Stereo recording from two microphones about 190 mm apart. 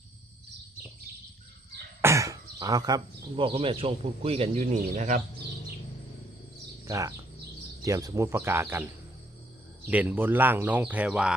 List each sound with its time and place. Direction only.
2.0 s speech: 15° right (ahead or behind); by 5.2 s 40° right (ahead or behind)
6.8 s speech: 15° right (ahead or behind)
9.9 s speech: 10° right (ahead or behind)